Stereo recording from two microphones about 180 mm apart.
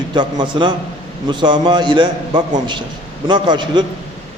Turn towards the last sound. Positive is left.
turn(degrees=-25)  # may be behind; listen again after turning